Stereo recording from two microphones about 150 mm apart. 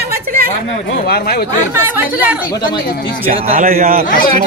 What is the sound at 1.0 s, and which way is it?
Speech, 90° left.